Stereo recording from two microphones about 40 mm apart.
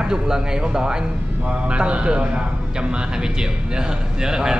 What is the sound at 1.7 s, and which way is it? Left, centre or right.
Speech, right.